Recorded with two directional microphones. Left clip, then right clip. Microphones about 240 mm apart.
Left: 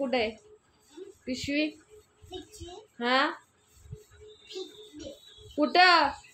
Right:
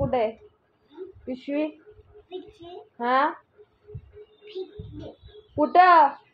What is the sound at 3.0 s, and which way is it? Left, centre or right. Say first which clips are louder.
Speech: right 4 dB; left.